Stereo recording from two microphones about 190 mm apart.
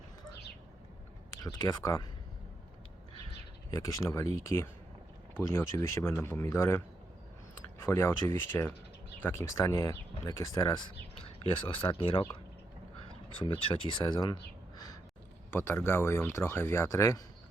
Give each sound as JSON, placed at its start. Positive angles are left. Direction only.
{"t": 1.4, "sound": "speech", "side_deg": 20}
{"t": 3.7, "sound": "speech", "side_deg": 15}
{"t": 11.2, "sound": "speech", "side_deg": 30}
{"t": 15.4, "sound": "speech", "side_deg": 10}